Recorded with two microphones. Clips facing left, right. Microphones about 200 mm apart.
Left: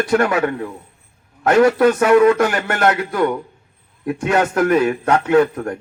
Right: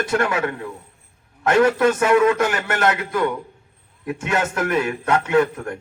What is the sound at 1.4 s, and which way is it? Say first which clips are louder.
A man's voice: left 4 dB; 35° left (ahead or behind).